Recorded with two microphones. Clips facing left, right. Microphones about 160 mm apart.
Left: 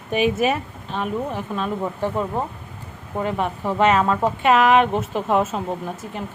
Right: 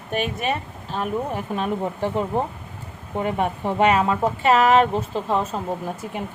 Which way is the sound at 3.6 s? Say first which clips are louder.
Left 1 dB; 10° right (ahead or behind).